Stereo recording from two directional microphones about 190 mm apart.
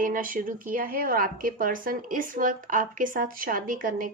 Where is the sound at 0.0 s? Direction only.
45° right (ahead or behind).